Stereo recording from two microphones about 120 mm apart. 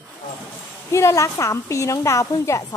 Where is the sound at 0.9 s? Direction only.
25° left (ahead or behind).